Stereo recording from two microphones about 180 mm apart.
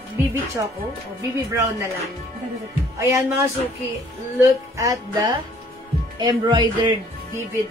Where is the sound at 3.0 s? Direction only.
15° right (ahead or behind).